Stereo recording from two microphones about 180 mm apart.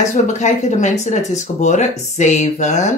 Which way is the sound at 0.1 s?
40° left (ahead or behind).